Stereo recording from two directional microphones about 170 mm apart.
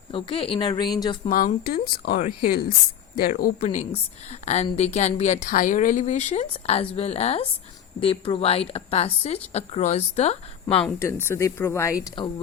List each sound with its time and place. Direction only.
0.1 s a woman's voice: 30° left (ahead or behind)
1.2 s speech: 45° left (ahead or behind)
3.6 s a woman's voice: 45° left (ahead or behind)
11.0 s speech: 15° left (ahead or behind)